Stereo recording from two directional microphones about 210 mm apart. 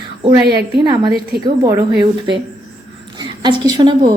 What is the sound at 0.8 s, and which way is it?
Speech, 20° right (ahead or behind).